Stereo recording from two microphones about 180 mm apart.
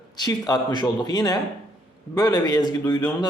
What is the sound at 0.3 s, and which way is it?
A man's voice, 20° left (ahead or behind).